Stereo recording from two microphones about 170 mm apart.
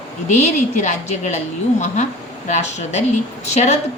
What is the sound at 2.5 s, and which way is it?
A woman's voice, 40° left (ahead or behind).